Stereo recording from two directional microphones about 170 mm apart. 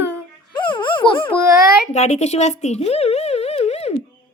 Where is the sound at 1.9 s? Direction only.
40° left (ahead or behind).